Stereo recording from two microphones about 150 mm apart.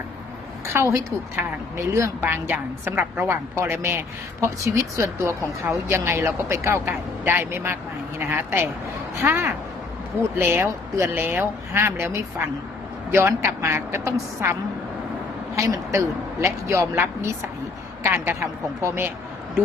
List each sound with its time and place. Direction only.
0.7 s a woman's voice: 20° right (ahead or behind)
15.5 s a woman's voice: 20° right (ahead or behind)